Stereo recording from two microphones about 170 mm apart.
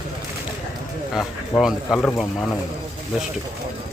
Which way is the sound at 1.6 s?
Centre (ahead or behind).